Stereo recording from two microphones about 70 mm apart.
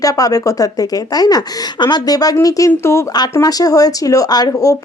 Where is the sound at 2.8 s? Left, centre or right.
Left.